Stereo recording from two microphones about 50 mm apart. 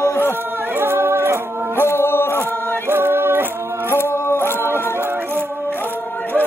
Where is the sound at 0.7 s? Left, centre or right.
Right.